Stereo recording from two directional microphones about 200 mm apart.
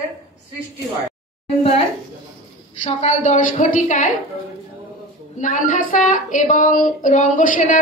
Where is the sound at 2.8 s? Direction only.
35° left (ahead or behind).